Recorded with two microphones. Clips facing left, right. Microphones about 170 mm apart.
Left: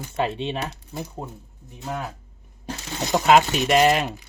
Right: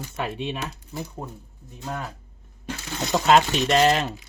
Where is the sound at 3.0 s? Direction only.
20° left (ahead or behind).